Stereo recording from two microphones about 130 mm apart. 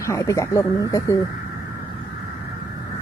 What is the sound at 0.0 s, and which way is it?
Speech, 25° left (ahead or behind).